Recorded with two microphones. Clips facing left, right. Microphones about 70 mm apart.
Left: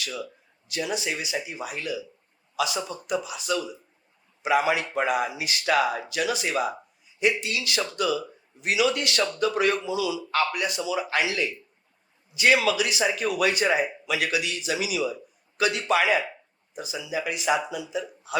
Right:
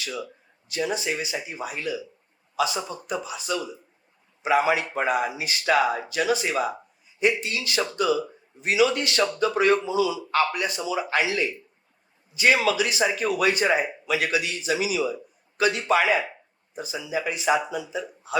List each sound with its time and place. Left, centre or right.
0.7 s speech: right